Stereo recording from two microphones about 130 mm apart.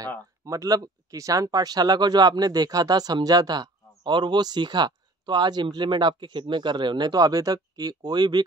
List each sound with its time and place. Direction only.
0.5 s speech: 25° right (ahead or behind)